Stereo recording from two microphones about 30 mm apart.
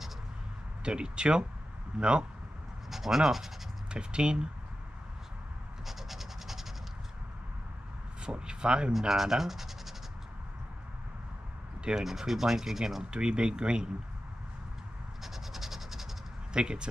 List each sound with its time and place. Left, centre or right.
0.8 s speech: right
2.9 s speech: centre
3.9 s speech: right
5.9 s scratch: centre
8.2 s speech: right
9.1 s speech: centre
11.9 s speech: centre
13.1 s speech: right
15.2 s a sound: centre
16.5 s speech: right